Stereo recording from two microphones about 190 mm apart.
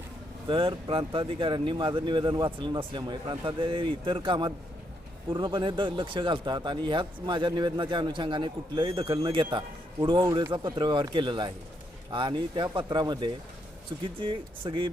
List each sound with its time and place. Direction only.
0.4 s speech: 25° right (ahead or behind)